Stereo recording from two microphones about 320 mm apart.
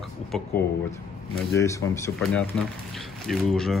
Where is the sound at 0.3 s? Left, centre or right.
Centre.